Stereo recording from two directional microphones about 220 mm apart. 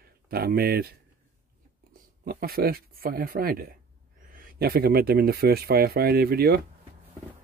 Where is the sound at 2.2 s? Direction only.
45° right (ahead or behind).